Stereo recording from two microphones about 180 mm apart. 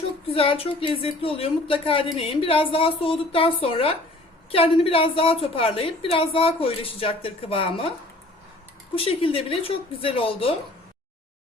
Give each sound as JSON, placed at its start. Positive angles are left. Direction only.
{"t": 0.3, "sound": "a woman's voice", "side_deg": 30}
{"t": 9.0, "sound": "a woman's voice", "side_deg": 30}